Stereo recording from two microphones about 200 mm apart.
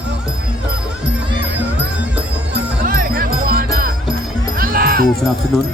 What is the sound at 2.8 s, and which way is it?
Music, 45° right (ahead or behind).